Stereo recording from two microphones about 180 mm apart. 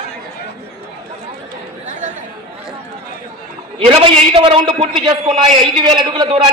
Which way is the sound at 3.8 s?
35° right (ahead or behind).